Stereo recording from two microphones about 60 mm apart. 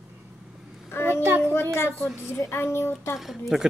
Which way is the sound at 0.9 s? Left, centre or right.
Left.